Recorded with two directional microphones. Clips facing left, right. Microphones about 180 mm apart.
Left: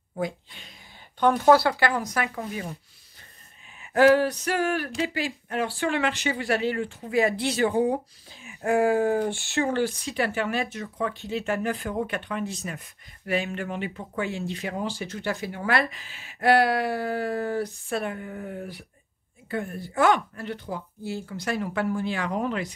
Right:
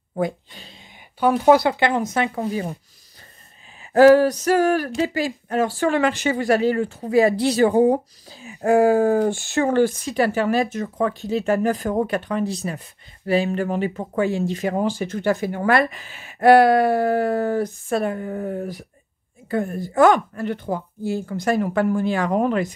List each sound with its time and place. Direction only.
0.6 s a sound: 30° right (ahead or behind)
1.3 s speech: 15° right (ahead or behind); by 2.7 s 30° right (ahead or behind)
3.8 s speech: 35° right (ahead or behind)
9.6 s speech: 50° right (ahead or behind)